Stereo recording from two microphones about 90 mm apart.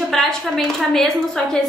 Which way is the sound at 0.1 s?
5° left (ahead or behind).